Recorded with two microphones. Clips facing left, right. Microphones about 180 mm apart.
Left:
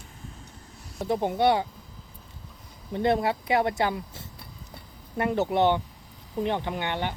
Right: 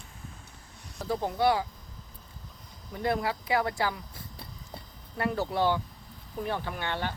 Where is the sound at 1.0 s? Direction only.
25° left (ahead or behind).